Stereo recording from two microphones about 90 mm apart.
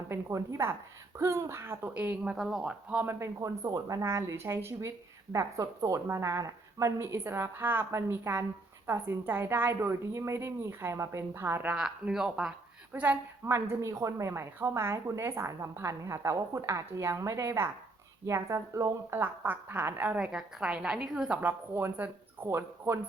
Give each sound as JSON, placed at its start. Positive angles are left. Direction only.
{"t": 0.1, "sound": "a woman's voice", "side_deg": -30}
{"t": 2.3, "sound": "speech", "side_deg": -5}
{"t": 2.9, "sound": "a woman's voice", "side_deg": -25}
{"t": 4.0, "sound": "a woman's voice", "side_deg": -30}
{"t": 11.7, "sound": "a woman's voice", "side_deg": -10}
{"t": 12.9, "sound": "a woman's voice", "side_deg": -20}
{"t": 13.5, "sound": "a woman's voice", "side_deg": -30}
{"t": 19.1, "sound": "a woman's voice", "side_deg": -25}
{"t": 20.1, "sound": "a woman's voice", "side_deg": -10}
{"t": 21.4, "sound": "a woman's voice", "side_deg": -20}